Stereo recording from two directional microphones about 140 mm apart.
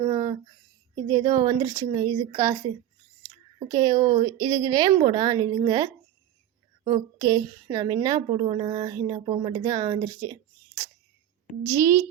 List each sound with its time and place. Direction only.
0.0 s a sound: 25° right (ahead or behind)
1.0 s a woman's voice: 25° right (ahead or behind)
11.6 s a woman's voice: 20° right (ahead or behind)